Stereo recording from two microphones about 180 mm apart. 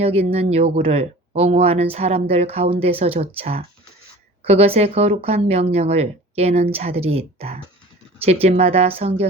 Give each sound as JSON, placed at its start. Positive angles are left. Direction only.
{"t": 0.0, "sound": "speech", "side_deg": -35}